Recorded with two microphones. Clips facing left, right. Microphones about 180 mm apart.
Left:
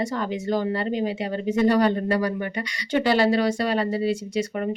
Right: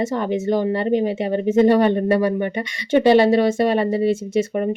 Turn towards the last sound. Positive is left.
turn(degrees=-20)  # may be behind; listen again after turning